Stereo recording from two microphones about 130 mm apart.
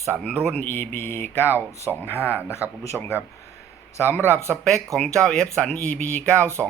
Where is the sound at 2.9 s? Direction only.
5° right (ahead or behind).